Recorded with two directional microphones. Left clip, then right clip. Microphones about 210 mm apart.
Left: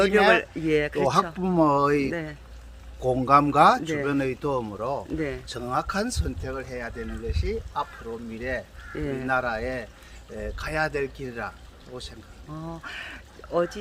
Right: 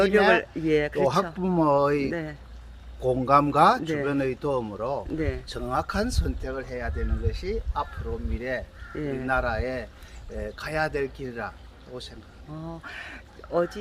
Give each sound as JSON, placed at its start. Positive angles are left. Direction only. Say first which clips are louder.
{"t": 0.3, "sound": "speech", "louder": "left 1 dB", "side_deg": 0}
{"t": 1.4, "sound": "speech", "louder": "left 1 dB", "side_deg": 20}
{"t": 9.0, "sound": "speech", "louder": "even", "side_deg": 5}